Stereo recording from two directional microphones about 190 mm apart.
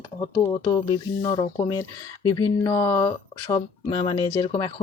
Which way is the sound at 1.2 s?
25° left (ahead or behind).